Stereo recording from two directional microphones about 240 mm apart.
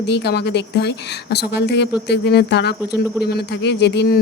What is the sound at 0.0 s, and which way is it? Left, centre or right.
Speech, left.